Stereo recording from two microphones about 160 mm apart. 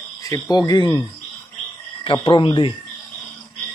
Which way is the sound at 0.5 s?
25° left (ahead or behind).